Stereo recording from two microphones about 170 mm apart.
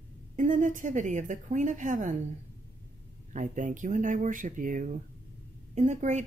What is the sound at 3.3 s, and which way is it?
Speech, 45° right (ahead or behind).